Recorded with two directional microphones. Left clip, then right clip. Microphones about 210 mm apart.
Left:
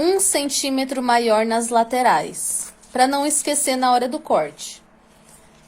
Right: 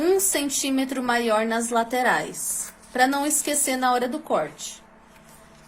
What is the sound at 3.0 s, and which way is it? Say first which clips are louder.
Speech: left 3 dB; 65° left (ahead or behind).